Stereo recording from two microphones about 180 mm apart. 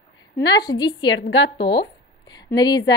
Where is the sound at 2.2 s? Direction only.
20° left (ahead or behind).